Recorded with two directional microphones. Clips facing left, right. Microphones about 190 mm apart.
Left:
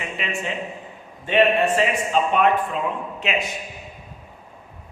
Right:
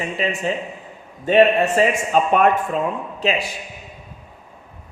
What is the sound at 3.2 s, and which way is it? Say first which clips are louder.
Speech: right 4 dB; 35° right (ahead or behind).